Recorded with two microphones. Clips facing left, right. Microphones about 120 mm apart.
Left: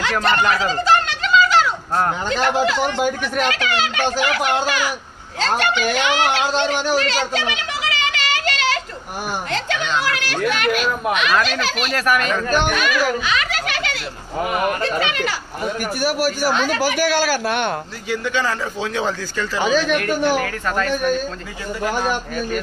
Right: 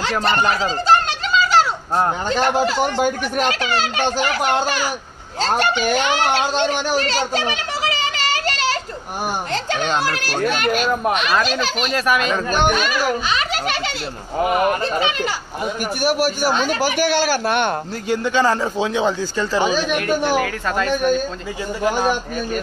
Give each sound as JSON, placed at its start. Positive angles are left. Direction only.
{"t": 0.0, "sound": "a sound", "side_deg": -30}
{"t": 2.2, "sound": "a child's voice", "side_deg": -40}
{"t": 6.9, "sound": "a sound", "side_deg": -40}
{"t": 9.5, "sound": "a child's voice", "side_deg": -40}
{"t": 11.9, "sound": "a child's voice", "side_deg": -20}
{"t": 18.1, "sound": "speech", "side_deg": -30}